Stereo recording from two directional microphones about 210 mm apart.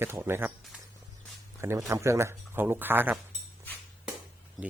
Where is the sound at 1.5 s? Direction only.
15° right (ahead or behind).